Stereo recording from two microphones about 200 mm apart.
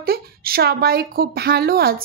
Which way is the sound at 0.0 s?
50° right (ahead or behind).